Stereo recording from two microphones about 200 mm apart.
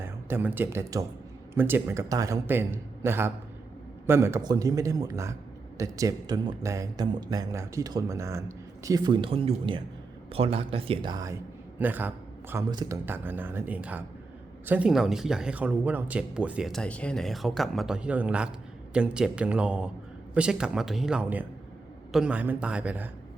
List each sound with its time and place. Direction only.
0.0 s speech: 10° right (ahead or behind)